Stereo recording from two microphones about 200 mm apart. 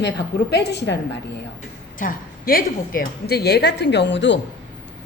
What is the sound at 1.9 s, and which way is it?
A woman's voice, 45° left (ahead or behind).